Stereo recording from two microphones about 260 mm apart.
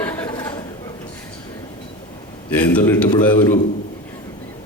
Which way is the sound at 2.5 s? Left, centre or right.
Centre.